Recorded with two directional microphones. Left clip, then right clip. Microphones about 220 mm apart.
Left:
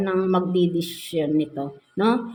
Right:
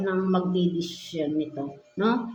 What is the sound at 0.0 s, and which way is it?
A woman's voice, 40° left (ahead or behind).